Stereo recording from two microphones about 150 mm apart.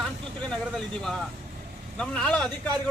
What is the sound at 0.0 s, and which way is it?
Vehicle, 5° left (ahead or behind).